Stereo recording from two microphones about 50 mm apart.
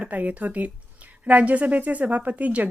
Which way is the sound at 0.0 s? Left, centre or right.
Right.